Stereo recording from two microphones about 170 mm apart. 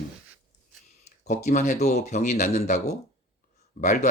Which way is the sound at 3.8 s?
45° left (ahead or behind).